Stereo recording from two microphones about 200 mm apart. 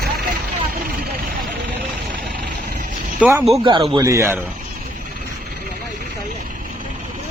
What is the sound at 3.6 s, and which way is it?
Speech, 25° right (ahead or behind).